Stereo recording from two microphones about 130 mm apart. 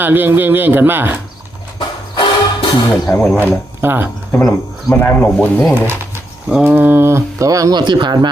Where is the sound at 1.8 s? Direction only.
35° left (ahead or behind).